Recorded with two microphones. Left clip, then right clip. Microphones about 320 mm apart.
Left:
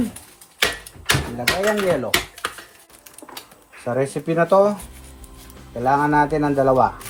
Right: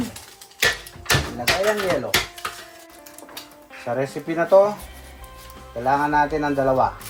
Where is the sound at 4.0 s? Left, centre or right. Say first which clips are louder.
Left 6 dB; left.